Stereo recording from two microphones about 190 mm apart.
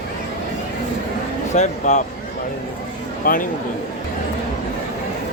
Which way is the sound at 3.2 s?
45° left (ahead or behind).